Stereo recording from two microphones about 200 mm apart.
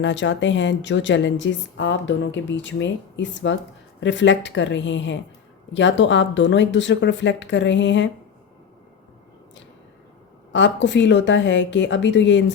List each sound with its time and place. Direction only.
0.0 s a woman's voice: 65° left (ahead or behind)
10.5 s a woman's voice: 65° left (ahead or behind)